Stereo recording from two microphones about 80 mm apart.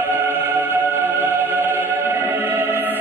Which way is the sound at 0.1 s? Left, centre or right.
Right.